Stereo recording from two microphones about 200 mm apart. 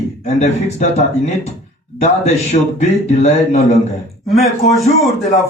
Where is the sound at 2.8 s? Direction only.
35° left (ahead or behind).